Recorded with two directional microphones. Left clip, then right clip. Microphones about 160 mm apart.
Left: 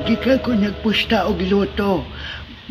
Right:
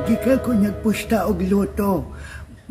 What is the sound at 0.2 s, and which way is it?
Speech, 40° right (ahead or behind).